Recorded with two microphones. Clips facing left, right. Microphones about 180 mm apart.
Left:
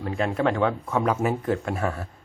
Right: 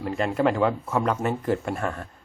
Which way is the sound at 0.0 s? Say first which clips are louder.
Right 1 dB; centre (ahead or behind).